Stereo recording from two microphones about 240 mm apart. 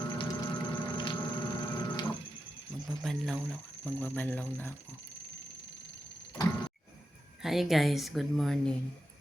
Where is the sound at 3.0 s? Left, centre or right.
Centre.